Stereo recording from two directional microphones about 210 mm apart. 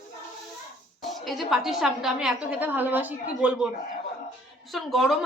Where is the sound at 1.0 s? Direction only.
Centre (ahead or behind).